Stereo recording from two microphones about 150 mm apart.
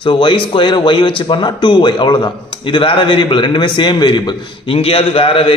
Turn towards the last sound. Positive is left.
turn(degrees=40)  # may be behind; listen again after turning